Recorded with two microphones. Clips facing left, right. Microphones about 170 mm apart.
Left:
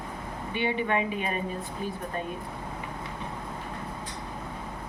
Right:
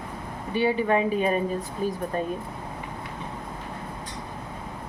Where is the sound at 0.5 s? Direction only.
35° right (ahead or behind).